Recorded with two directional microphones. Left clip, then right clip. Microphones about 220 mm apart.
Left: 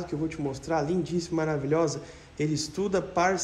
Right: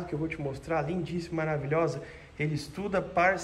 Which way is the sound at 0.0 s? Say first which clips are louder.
Left 2 dB; 10° left (ahead or behind).